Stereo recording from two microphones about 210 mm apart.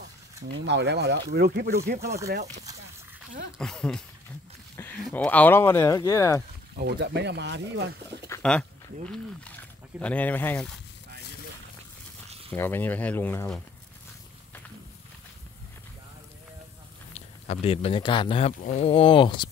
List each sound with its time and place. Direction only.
0.6 s speech: 55° right (ahead or behind)
2.5 s speech: 15° right (ahead or behind)
3.5 s speech: 5° left (ahead or behind)
5.0 s speech: 5° left (ahead or behind)
6.8 s speech: 55° right (ahead or behind)
8.3 s a sound: 5° left (ahead or behind)
9.9 s speech: 5° left (ahead or behind)
12.5 s speech: 10° left (ahead or behind)
17.1 s speech: 30° left (ahead or behind)